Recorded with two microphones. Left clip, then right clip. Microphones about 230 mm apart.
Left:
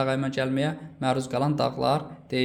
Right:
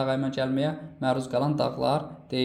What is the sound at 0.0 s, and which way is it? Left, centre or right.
Speech, left.